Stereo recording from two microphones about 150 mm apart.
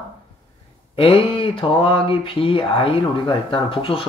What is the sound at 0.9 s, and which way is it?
Speech, 35° left (ahead or behind).